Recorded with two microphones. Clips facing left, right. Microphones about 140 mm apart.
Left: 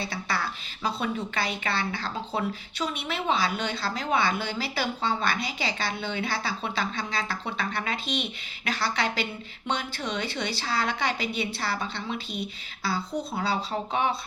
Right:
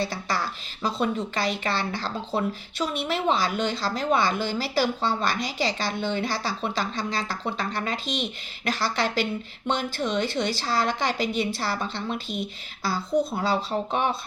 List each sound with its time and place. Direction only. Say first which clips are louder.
0.0 s a woman's voice: right 3 dB; 45° right (ahead or behind)